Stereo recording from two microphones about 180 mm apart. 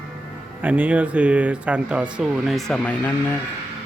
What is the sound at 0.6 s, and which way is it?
Speech, 10° right (ahead or behind).